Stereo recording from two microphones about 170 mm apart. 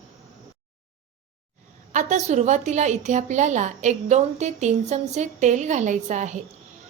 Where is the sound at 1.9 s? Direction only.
45° right (ahead or behind).